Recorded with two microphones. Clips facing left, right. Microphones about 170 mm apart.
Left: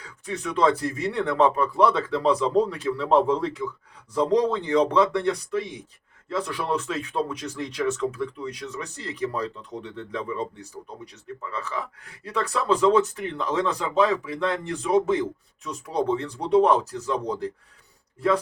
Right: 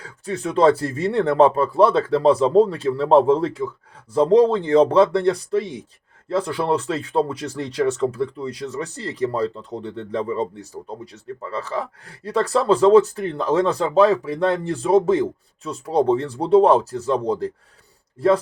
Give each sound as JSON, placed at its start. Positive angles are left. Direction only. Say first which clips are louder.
{"t": 0.0, "sound": "speech", "louder": "right 5 dB", "side_deg": -30}